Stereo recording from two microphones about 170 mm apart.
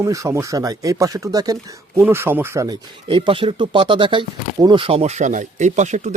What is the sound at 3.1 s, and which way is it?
Speech, 30° right (ahead or behind).